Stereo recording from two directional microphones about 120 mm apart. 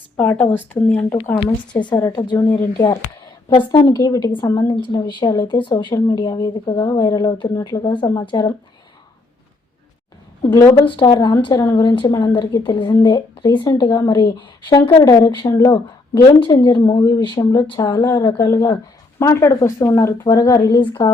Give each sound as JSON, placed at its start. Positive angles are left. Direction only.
{"t": 0.2, "sound": "speech", "side_deg": 10}
{"t": 1.4, "sound": "a woman's voice", "side_deg": 45}
{"t": 2.0, "sound": "a woman's voice", "side_deg": 30}
{"t": 10.7, "sound": "a woman's voice", "side_deg": 45}